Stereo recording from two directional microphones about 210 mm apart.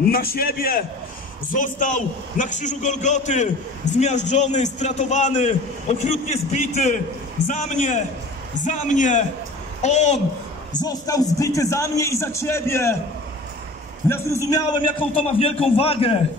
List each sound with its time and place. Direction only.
0.1 s a man's voice: 45° left (ahead or behind)
10.7 s a man's voice: 20° left (ahead or behind)
14.0 s a man's voice: 10° left (ahead or behind); by 16.1 s 30° left (ahead or behind)